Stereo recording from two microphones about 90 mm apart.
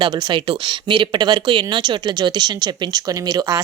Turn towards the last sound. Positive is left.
turn(degrees=-45)  # may be behind; listen again after turning